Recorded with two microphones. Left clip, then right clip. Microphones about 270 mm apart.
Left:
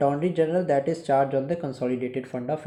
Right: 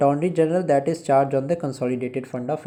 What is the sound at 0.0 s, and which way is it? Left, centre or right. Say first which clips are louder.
Speech: right 4 dB; right.